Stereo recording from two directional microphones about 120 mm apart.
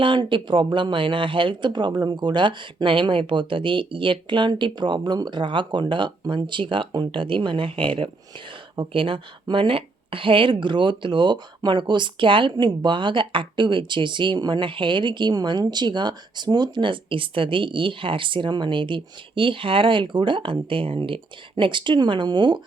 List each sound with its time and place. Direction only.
0.0 s speech: 40° right (ahead or behind)